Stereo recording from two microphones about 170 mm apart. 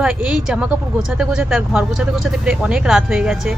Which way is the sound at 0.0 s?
5° right (ahead or behind).